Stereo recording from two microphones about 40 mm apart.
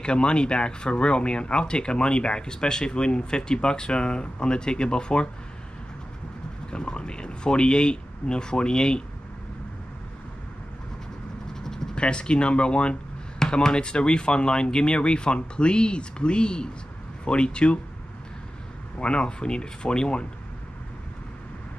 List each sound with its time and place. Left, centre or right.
0.0 s speech: left
6.7 s speech: left
11.6 s a sound: centre
11.9 s speech: left
13.4 s speech: centre
18.9 s speech: left